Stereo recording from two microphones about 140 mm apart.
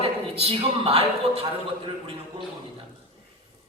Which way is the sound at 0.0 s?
45° right (ahead or behind).